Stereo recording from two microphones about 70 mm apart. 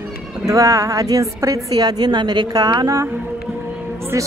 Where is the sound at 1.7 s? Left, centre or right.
Right.